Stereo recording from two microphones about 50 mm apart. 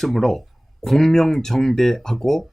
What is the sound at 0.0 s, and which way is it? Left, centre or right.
Speech, centre.